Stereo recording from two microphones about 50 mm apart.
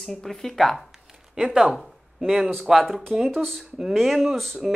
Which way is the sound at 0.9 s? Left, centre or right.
Centre.